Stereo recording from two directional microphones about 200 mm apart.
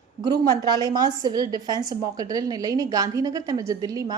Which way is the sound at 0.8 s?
20° right (ahead or behind).